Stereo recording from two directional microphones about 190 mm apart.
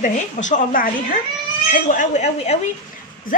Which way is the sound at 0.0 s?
40° left (ahead or behind).